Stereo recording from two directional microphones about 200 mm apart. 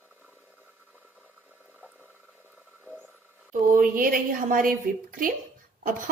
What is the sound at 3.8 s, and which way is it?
Speech, 45° right (ahead or behind).